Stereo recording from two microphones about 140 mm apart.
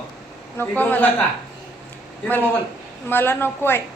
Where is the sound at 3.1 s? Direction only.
15° left (ahead or behind).